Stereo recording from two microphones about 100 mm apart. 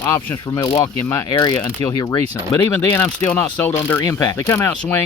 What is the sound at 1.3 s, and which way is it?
Speech, 50° left (ahead or behind).